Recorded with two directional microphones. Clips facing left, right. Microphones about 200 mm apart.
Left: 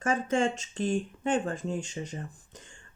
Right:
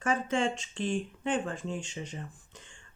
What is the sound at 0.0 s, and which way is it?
Speech, 45° left (ahead or behind).